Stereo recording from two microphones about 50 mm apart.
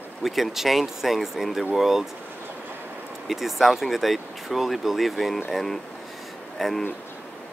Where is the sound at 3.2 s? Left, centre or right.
Centre.